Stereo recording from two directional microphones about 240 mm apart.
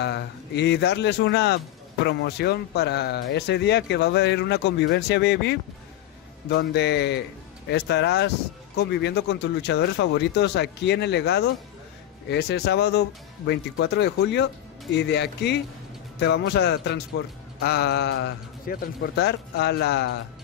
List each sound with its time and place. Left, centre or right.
0.0 s speech: left